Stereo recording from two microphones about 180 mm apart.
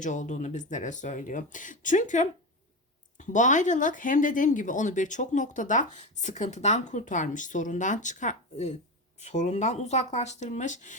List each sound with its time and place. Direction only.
0.0 s speech: 45° left (ahead or behind)